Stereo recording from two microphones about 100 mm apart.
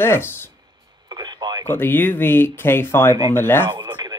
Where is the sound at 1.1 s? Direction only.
45° right (ahead or behind).